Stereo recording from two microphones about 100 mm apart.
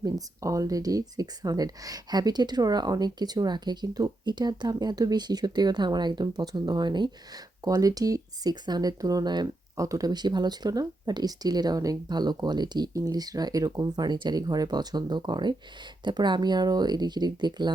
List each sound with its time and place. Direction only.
0.0 s speech: 35° right (ahead or behind)
7.6 s speech: 40° right (ahead or behind)